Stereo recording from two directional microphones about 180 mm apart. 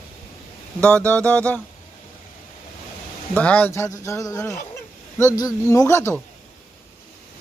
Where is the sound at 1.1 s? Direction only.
5° left (ahead or behind).